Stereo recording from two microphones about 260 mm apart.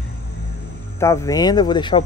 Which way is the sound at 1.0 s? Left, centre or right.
Centre.